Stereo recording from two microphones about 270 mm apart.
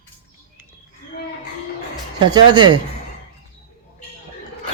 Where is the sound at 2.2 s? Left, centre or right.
Centre.